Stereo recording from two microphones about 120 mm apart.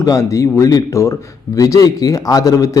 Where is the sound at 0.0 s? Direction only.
30° left (ahead or behind).